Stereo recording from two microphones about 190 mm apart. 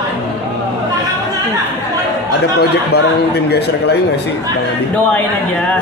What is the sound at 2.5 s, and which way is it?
Speech, 60° left (ahead or behind).